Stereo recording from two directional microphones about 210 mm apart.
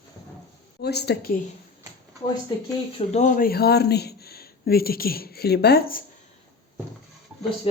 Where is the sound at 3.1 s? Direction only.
35° left (ahead or behind).